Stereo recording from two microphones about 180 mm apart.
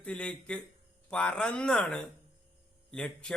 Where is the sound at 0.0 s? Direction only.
5° left (ahead or behind).